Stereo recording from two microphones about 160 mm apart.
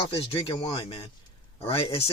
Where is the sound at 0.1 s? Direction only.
35° left (ahead or behind).